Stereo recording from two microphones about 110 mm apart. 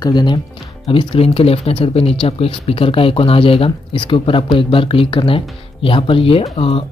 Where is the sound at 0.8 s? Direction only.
55° left (ahead or behind).